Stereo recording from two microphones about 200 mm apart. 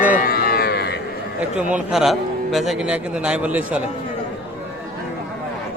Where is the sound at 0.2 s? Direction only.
50° left (ahead or behind).